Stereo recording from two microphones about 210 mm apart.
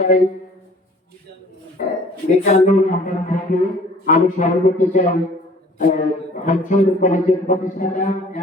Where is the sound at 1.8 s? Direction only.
40° left (ahead or behind).